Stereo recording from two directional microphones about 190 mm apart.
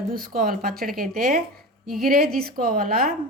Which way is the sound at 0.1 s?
50° right (ahead or behind).